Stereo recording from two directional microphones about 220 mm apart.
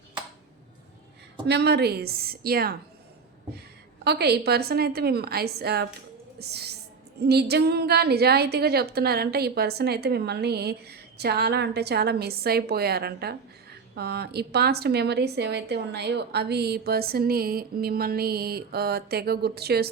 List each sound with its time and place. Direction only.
1.5 s a woman's voice: 50° right (ahead or behind)
4.0 s a woman's voice: 50° right (ahead or behind)